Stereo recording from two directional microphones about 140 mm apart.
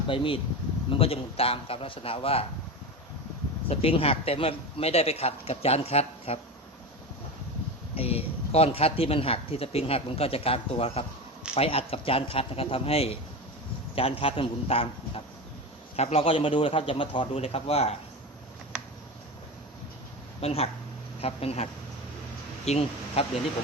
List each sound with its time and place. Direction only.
0.1 s a man's voice: 40° left (ahead or behind)
3.7 s speech: 45° left (ahead or behind)
7.9 s a man's voice: 45° left (ahead or behind)
20.4 s speech: 50° left (ahead or behind)